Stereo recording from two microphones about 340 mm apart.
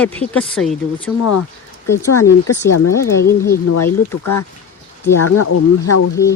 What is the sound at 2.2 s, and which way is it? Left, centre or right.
Speech, left.